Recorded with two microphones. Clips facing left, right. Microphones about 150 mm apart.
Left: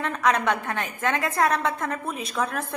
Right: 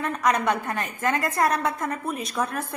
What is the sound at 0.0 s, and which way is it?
A woman's voice, centre (ahead or behind).